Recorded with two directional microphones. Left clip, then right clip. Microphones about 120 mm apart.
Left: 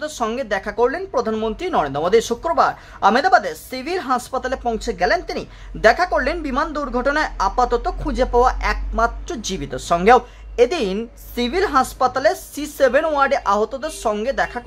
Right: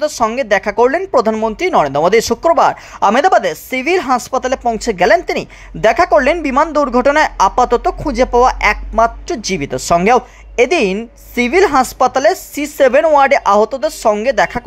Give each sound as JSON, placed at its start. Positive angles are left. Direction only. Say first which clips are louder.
{"t": 0.4, "sound": "speech", "louder": "right 9 dB", "side_deg": -35}
{"t": 0.8, "sound": "a woman's voice", "louder": "right 6 dB", "side_deg": -45}
{"t": 1.6, "sound": "speech", "louder": "right 9 dB", "side_deg": -25}
{"t": 2.5, "sound": "speech", "louder": "right 3 dB", "side_deg": -45}
{"t": 4.8, "sound": "a woman's voice", "louder": "right 9 dB", "side_deg": -50}